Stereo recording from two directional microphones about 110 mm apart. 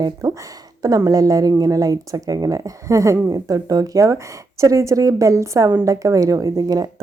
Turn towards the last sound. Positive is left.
turn(degrees=-35)  # may be behind; listen again after turning